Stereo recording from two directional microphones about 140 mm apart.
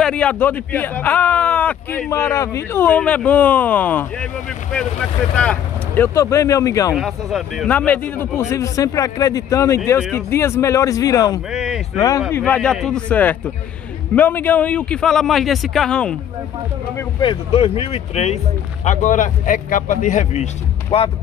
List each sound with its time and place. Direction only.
0.0 s speech: 10° left (ahead or behind)
5.4 s speech: 10° left (ahead or behind)
6.1 s a man's voice: 20° left (ahead or behind)
6.9 s a man's voice: centre (ahead or behind); by 11.4 s 25° left (ahead or behind)
11.5 s speech: 5° right (ahead or behind)
12.3 s speech: 15° left (ahead or behind)
17.2 s speech: 40° left (ahead or behind)
18.9 s speech: 65° left (ahead or behind)